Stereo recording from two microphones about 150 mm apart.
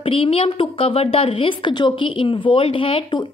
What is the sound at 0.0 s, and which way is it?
A woman's voice, 40° left (ahead or behind).